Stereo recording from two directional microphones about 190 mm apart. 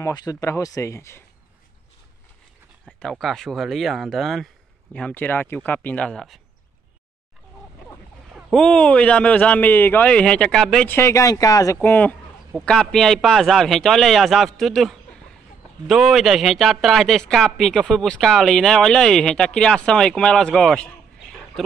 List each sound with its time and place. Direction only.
0.0 s a man's voice: 20° left (ahead or behind)
3.0 s a man's voice: centre (ahead or behind)
8.5 s a man's voice: 5° left (ahead or behind)